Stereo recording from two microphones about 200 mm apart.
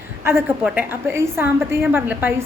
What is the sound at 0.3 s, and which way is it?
A woman's voice, 10° right (ahead or behind).